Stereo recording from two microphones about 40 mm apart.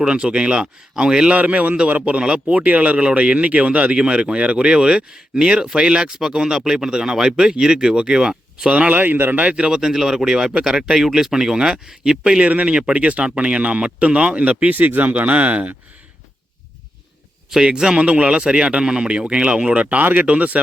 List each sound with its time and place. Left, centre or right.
0.0 s speech: right
1.4 s speech: right
6.1 s speech: centre
8.7 s speech: right
9.3 s speech: right
9.6 s speech: centre
12.5 s speech: right
17.6 s speech: centre
19.8 s speech: right